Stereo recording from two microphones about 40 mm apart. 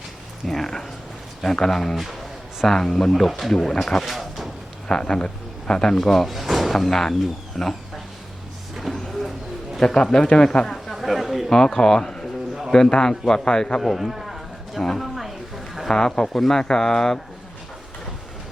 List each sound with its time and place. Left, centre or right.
0.4 s a man's voice: centre
4.1 s a sound: centre
4.9 s speech: left
6.0 s a man's voice: centre
6.3 s sliding door: centre
6.7 s a man's voice: centre
7.6 s speech: centre
8.7 s a sound: centre
9.8 s speech: centre
10.9 s a sound: centre
11.4 s a man's voice: centre
13.8 s speech: centre
14.8 s a sound: centre
15.9 s a man's voice: centre